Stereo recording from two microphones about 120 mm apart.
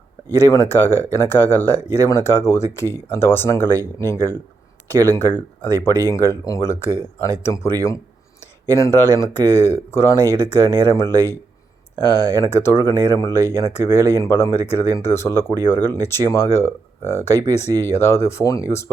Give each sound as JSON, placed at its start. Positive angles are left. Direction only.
{"t": 0.3, "sound": "speech", "side_deg": 25}
{"t": 8.7, "sound": "speech", "side_deg": 25}
{"t": 12.1, "sound": "speech", "side_deg": -30}
{"t": 12.4, "sound": "speech", "side_deg": 20}